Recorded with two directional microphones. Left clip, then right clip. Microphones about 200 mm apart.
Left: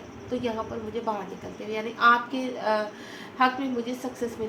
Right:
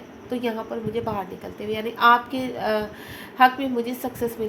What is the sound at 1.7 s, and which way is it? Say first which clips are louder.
A woman's voice: right 3 dB; 50° right (ahead or behind).